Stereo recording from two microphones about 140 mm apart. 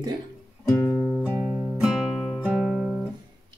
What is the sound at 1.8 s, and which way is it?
Music, 5° right (ahead or behind).